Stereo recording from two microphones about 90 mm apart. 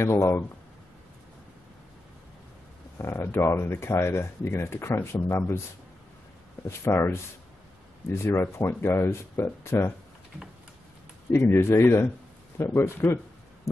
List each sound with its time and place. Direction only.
0.0 s speech: 30° left (ahead or behind)
3.0 s speech: 25° left (ahead or behind)
6.8 s speech: 30° left (ahead or behind)
8.1 s speech: 30° left (ahead or behind)
11.3 s speech: 25° left (ahead or behind)